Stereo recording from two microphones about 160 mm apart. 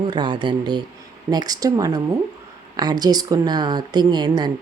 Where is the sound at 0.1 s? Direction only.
30° right (ahead or behind).